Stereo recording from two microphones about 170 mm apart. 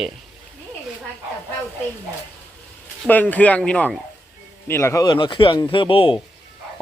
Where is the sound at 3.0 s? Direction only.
10° left (ahead or behind).